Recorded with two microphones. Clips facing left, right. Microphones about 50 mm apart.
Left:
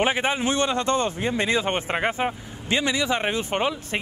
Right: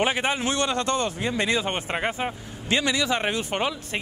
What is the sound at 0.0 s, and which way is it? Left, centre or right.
Speech, centre.